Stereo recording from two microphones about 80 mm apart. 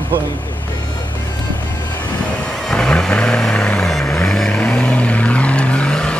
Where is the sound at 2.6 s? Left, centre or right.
Centre.